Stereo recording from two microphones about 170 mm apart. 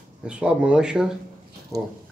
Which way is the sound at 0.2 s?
5° right (ahead or behind).